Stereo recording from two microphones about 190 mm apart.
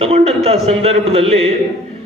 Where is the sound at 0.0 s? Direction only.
35° right (ahead or behind).